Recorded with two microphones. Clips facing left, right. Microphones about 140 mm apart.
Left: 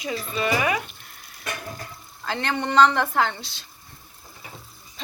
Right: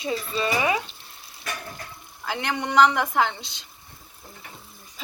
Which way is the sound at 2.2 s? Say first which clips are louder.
Left 1 dB; 15° right (ahead or behind).